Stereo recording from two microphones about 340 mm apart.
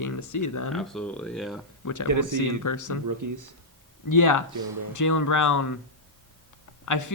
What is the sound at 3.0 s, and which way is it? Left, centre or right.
Speech, right.